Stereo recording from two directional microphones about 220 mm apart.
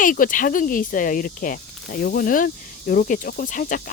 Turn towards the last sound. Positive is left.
turn(degrees=35)  # may be behind; listen again after turning